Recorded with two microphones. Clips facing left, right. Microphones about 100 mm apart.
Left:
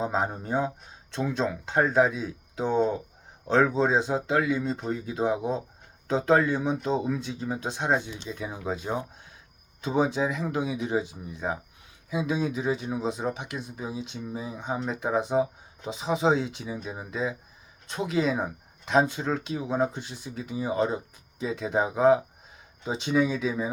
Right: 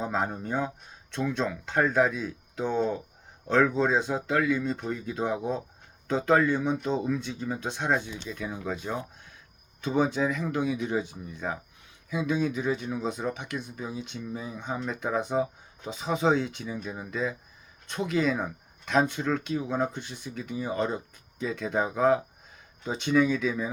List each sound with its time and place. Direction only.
0.0 s speech: 25° left (ahead or behind)